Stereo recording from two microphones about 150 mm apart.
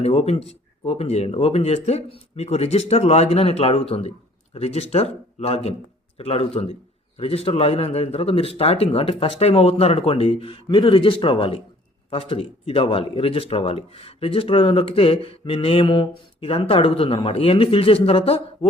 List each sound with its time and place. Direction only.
0.0 s speech: 45° left (ahead or behind)